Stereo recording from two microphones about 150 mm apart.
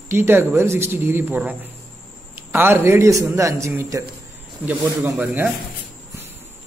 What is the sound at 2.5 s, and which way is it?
A woman's voice, 15° right (ahead or behind).